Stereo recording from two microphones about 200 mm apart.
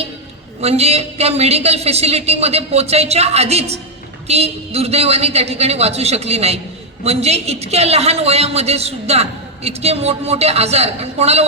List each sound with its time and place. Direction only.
0.6 s a woman's voice: 30° right (ahead or behind)